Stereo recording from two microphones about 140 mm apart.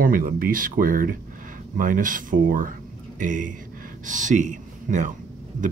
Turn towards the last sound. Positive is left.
turn(degrees=-60)  # may be behind; listen again after turning